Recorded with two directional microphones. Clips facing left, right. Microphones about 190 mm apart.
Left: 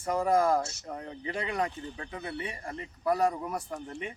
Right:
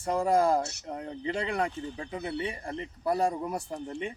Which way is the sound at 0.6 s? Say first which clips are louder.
Right 2 dB; 65° right (ahead or behind).